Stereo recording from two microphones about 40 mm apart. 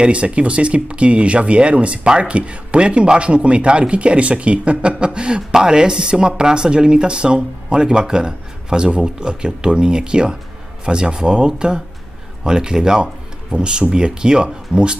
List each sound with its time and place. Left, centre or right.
0.0 s speech: right